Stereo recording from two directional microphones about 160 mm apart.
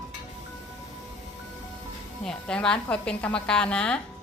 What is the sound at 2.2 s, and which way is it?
A woman's voice, 5° left (ahead or behind).